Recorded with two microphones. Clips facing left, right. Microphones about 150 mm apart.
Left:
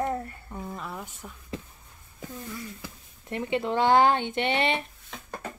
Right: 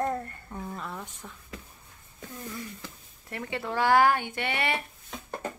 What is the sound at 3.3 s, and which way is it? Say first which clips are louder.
Speech: left 5 dB; 20° left (ahead or behind).